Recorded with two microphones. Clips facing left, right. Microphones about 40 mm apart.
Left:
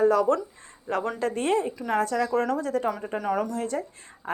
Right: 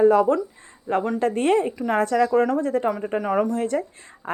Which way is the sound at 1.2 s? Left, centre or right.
Right.